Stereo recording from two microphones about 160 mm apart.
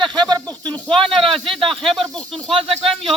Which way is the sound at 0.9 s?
5° left (ahead or behind).